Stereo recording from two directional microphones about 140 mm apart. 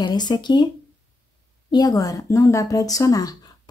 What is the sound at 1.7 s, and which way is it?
Speech, 25° left (ahead or behind).